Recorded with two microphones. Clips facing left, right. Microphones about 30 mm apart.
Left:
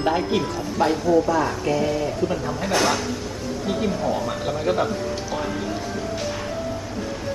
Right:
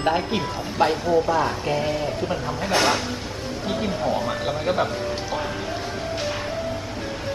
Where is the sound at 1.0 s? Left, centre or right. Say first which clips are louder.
Left 1 dB; right.